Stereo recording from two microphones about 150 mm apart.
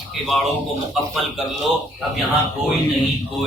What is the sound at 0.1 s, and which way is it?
Speech, centre (ahead or behind).